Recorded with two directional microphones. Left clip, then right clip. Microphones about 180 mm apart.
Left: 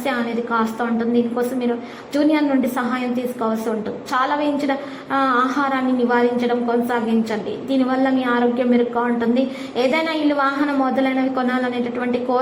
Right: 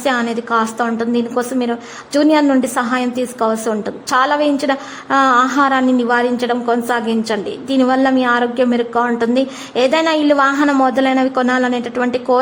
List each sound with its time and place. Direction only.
0.0 s a woman's voice: 35° right (ahead or behind)